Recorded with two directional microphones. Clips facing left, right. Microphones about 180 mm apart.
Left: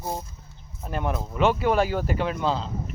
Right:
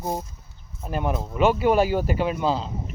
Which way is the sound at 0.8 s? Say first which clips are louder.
Right 2 dB; 5° right (ahead or behind).